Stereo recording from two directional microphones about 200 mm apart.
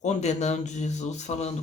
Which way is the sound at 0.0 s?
35° left (ahead or behind).